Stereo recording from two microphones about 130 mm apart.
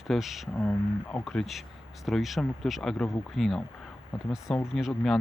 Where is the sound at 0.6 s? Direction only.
10° left (ahead or behind).